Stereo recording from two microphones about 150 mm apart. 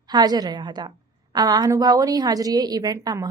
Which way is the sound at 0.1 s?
25° right (ahead or behind).